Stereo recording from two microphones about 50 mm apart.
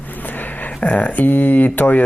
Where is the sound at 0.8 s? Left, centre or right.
Left.